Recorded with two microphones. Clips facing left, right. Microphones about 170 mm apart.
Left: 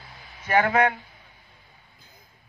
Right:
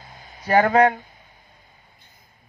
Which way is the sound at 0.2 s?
40° right (ahead or behind).